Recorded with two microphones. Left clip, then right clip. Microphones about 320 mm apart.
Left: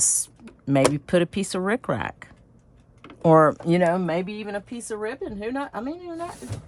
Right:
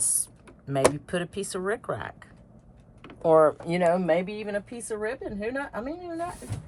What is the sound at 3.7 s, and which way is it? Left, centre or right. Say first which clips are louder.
A woman's voice: left 1 dB; left.